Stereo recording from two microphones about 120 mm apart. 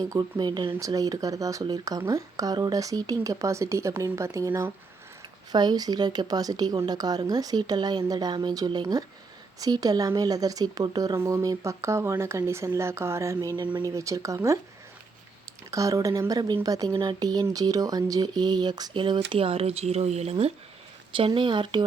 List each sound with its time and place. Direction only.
0.0 s a woman's voice: 30° right (ahead or behind)
15.7 s a woman's voice: 25° right (ahead or behind); by 20.3 s 65° right (ahead or behind)
21.2 s speech: 45° right (ahead or behind)